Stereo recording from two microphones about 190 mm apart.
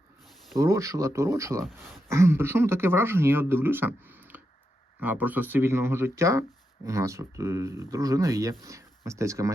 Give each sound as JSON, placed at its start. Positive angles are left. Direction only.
{"t": 0.6, "sound": "speech", "side_deg": -15}